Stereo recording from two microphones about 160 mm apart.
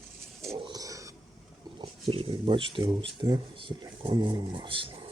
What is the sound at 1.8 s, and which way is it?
Speech, 35° right (ahead or behind).